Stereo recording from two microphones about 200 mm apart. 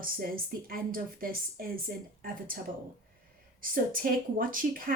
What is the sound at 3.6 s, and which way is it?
A woman's voice, 45° right (ahead or behind).